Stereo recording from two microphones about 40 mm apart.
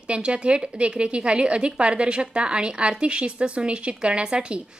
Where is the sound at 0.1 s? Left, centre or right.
Right.